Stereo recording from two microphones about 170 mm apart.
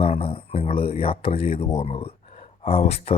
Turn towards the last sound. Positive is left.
turn(degrees=35)  # may be behind; listen again after turning